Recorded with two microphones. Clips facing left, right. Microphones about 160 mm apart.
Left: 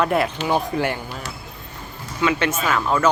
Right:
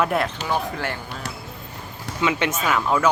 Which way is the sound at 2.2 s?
20° right (ahead or behind).